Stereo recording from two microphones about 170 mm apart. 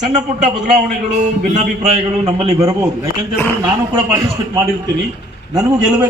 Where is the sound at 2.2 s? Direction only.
35° right (ahead or behind).